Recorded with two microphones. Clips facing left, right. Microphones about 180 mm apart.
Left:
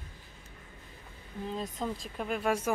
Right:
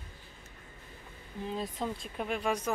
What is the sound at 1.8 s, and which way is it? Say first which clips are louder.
Speech: even; centre (ahead or behind).